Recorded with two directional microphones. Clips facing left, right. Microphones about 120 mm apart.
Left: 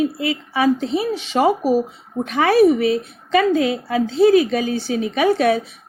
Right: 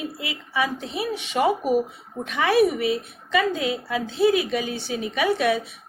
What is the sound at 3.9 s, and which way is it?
A woman's voice, 40° left (ahead or behind).